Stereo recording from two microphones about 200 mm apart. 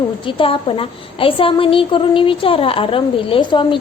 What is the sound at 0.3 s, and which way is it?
A woman's voice, 25° left (ahead or behind).